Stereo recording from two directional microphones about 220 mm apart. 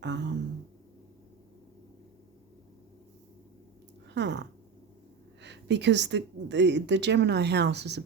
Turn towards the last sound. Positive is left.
turn(degrees=-50)  # may be behind; listen again after turning